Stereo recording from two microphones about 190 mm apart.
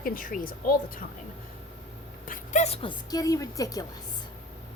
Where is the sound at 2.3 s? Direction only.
35° left (ahead or behind); by 3.8 s 20° left (ahead or behind).